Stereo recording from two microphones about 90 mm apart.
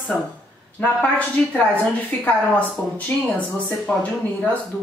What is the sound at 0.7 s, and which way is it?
A woman's voice, 15° left (ahead or behind).